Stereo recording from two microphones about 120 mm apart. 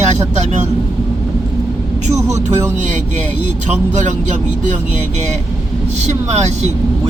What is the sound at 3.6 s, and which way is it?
Speech, 80° right.